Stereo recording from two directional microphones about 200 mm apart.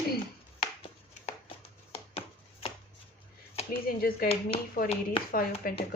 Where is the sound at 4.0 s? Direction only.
50° left (ahead or behind).